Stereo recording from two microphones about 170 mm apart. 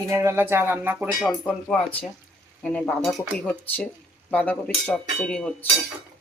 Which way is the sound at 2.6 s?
10° left (ahead or behind).